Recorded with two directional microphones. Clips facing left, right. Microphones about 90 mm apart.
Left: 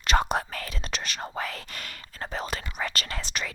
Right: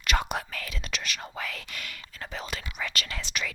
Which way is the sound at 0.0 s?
35° left (ahead or behind).